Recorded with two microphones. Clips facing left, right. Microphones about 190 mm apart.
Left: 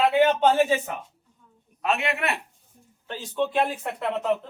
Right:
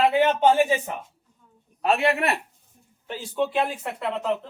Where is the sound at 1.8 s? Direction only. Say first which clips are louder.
Right 4 dB; 35° right (ahead or behind).